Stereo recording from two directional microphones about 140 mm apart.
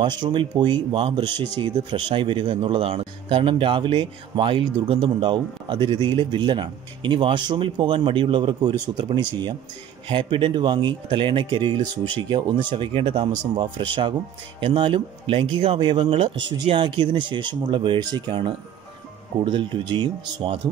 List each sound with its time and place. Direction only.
0.0 s a man's voice: 30° right (ahead or behind)